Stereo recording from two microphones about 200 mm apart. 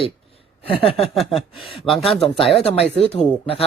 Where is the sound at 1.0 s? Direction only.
Centre (ahead or behind).